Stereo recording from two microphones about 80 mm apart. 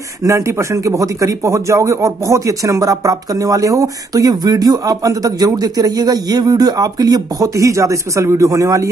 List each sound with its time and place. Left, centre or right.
0.2 s a man's voice: right